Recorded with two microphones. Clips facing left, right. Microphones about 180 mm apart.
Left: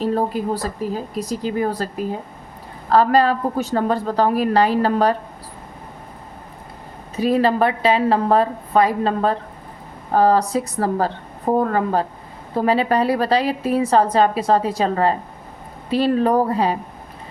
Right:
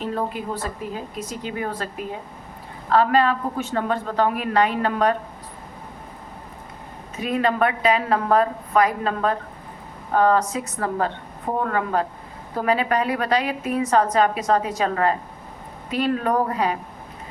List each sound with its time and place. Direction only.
0.0 s a woman's voice: 40° left (ahead or behind)
7.2 s a woman's voice: 35° left (ahead or behind)